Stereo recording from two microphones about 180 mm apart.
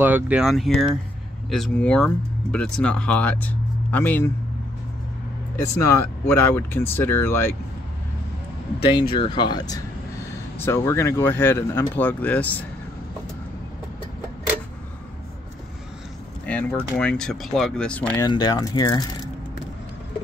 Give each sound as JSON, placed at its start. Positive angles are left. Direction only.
{"t": 0.0, "sound": "speech", "side_deg": -10}
{"t": 5.6, "sound": "speech", "side_deg": 15}
{"t": 8.9, "sound": "speech", "side_deg": 30}
{"t": 16.4, "sound": "speech", "side_deg": 10}
{"t": 18.2, "sound": "speech", "side_deg": 20}